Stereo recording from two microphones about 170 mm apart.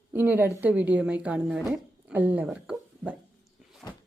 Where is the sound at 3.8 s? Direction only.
15° left (ahead or behind).